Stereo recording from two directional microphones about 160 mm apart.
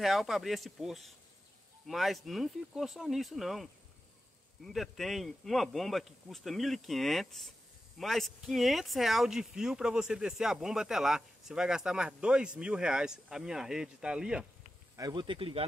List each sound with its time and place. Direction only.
0.0 s speech: centre (ahead or behind)
4.6 s speech: centre (ahead or behind)
15.0 s speech: 25° right (ahead or behind)